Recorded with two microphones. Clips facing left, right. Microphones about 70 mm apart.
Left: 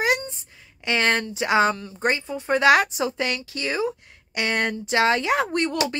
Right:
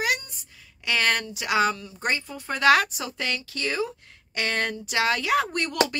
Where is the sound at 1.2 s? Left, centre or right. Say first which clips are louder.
Left 4 dB; left.